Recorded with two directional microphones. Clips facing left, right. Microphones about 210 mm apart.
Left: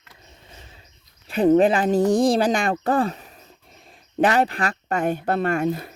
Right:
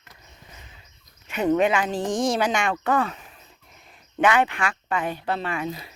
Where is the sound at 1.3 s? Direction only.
35° left (ahead or behind).